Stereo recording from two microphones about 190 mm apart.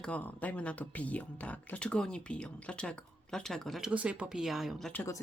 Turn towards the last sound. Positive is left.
turn(degrees=10)  # may be behind; listen again after turning